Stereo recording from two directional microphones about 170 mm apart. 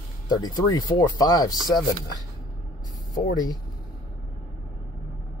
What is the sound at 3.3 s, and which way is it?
Speech, 25° left (ahead or behind).